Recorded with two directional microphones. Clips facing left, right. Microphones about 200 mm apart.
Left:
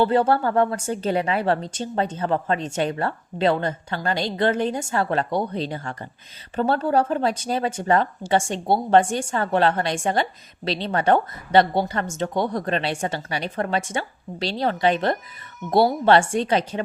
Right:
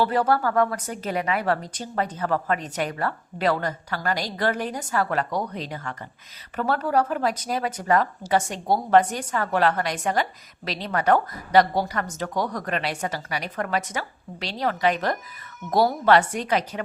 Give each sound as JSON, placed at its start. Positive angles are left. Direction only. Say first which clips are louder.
{"t": 0.0, "sound": "speech", "louder": "left 3 dB", "side_deg": 25}